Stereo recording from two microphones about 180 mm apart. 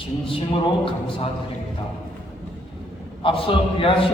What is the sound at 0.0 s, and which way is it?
Speech, 30° left (ahead or behind).